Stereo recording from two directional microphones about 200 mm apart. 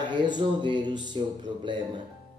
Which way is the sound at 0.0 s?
25° right (ahead or behind).